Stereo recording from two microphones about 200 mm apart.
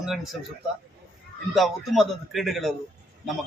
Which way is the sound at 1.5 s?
Centre (ahead or behind).